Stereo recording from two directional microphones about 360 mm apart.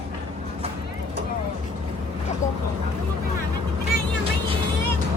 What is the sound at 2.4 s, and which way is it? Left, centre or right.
Speech, left.